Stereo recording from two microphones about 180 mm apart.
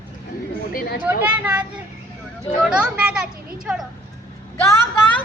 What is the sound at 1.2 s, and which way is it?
Speech, 5° right (ahead or behind).